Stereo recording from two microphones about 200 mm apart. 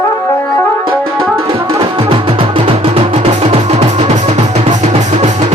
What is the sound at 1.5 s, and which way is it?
Music, 30° right (ahead or behind).